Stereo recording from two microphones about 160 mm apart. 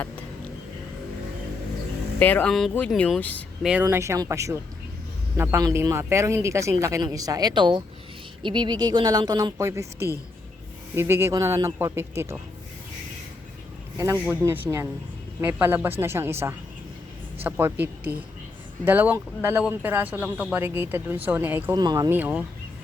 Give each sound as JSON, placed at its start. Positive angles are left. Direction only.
{"t": 2.1, "sound": "speech", "side_deg": 10}
{"t": 3.6, "sound": "speech", "side_deg": -5}
{"t": 3.8, "sound": "speech", "side_deg": -20}
{"t": 14.0, "sound": "speech", "side_deg": -20}
{"t": 21.8, "sound": "speech", "side_deg": -25}
{"t": 22.1, "sound": "speech", "side_deg": -10}